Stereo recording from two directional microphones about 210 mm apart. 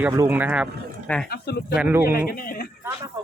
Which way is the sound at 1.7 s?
5° right (ahead or behind).